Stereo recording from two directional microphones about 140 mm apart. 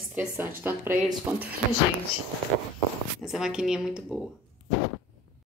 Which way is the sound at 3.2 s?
5° right (ahead or behind).